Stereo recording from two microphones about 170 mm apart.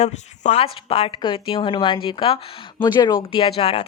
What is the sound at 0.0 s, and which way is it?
Speech, 40° left (ahead or behind).